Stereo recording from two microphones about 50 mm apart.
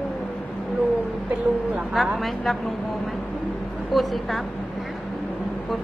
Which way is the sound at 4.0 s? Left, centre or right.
Centre.